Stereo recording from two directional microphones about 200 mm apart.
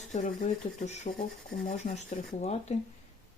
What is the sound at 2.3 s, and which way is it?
Speech, 35° left (ahead or behind).